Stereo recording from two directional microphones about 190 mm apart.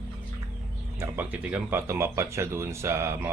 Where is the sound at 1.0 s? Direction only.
10° right (ahead or behind).